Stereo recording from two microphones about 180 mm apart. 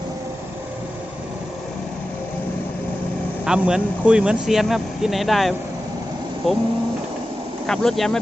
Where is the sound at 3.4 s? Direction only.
5° right (ahead or behind).